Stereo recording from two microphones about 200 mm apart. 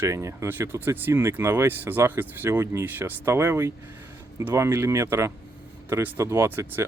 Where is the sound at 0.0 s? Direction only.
15° right (ahead or behind).